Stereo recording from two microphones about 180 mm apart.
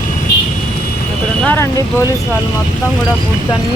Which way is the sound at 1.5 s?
15° left (ahead or behind).